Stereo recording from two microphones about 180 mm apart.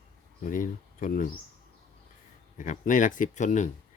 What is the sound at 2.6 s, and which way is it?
Speech, 45° left (ahead or behind).